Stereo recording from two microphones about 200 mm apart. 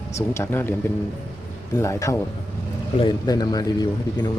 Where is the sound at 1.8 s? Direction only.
15° left (ahead or behind).